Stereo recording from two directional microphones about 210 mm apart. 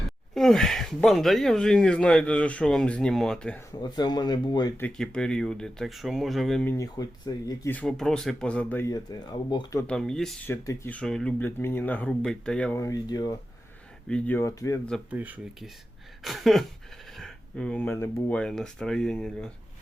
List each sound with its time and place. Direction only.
0.3 s speech: centre (ahead or behind)
3.7 s speech: 20° left (ahead or behind)
4.9 s speech: 5° left (ahead or behind)
6.7 s speech: 15° left (ahead or behind)
9.8 s speech: 5° left (ahead or behind)
15.1 s speech: 10° right (ahead or behind)